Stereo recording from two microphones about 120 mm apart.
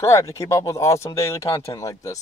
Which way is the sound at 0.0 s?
25° left (ahead or behind).